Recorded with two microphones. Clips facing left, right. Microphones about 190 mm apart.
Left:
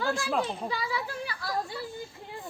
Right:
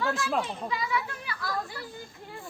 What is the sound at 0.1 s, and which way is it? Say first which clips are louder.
Speech: even; centre (ahead or behind).